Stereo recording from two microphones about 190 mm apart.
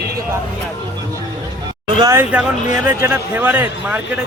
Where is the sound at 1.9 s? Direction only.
20° right (ahead or behind).